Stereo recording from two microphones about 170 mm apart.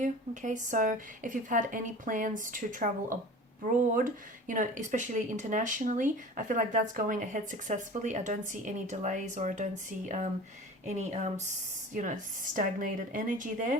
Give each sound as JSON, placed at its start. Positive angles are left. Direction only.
{"t": 0.0, "sound": "speech", "side_deg": -45}
{"t": 10.8, "sound": "speech", "side_deg": -40}